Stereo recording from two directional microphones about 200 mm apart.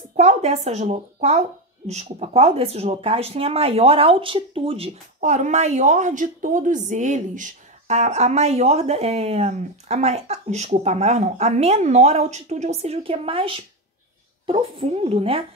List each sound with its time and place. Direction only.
0.1 s a woman's voice: 35° right (ahead or behind)